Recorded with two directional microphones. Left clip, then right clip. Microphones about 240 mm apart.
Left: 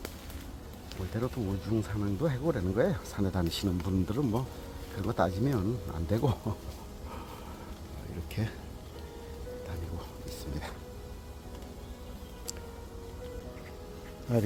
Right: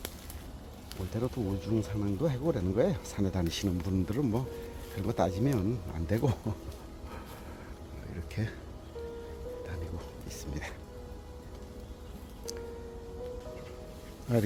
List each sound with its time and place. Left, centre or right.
1.1 s speech: centre
8.4 s speech: centre
14.3 s speech: centre